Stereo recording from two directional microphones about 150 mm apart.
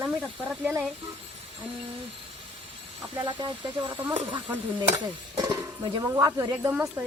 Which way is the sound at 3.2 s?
30° right (ahead or behind).